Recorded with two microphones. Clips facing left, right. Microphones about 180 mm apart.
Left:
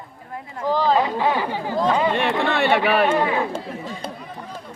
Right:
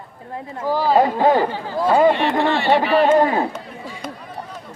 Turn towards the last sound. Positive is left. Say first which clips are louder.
# right 4 dB
turn(degrees=-45)  # may be behind; listen again after turning